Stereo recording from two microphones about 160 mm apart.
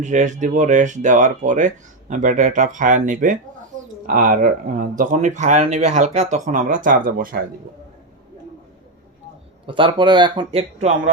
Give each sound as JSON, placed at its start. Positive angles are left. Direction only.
{"t": 0.0, "sound": "speech", "side_deg": -50}
{"t": 9.6, "sound": "speech", "side_deg": -30}